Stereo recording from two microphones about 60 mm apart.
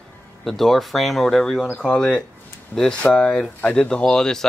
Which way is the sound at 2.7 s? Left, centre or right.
Left.